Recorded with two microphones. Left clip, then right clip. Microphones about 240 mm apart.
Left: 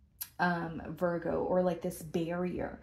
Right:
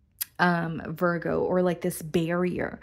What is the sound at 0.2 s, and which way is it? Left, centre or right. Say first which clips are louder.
Speech: right 7 dB; right.